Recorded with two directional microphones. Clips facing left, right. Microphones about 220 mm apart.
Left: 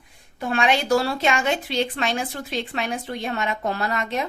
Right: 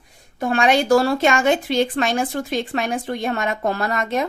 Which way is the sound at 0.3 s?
45° right (ahead or behind).